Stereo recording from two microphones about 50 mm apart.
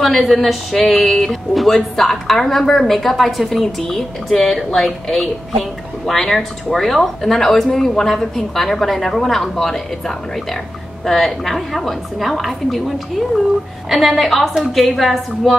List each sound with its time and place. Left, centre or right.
0.0 s a woman's voice: centre